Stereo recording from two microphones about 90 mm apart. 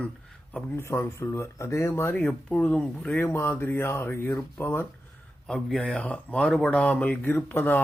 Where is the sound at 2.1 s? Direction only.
15° left (ahead or behind).